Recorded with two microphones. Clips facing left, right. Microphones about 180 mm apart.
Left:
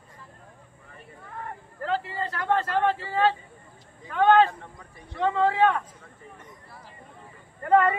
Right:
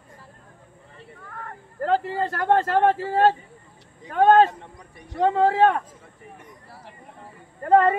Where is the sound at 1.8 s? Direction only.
45° right (ahead or behind).